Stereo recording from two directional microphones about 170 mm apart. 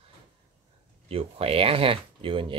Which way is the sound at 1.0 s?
35° right (ahead or behind).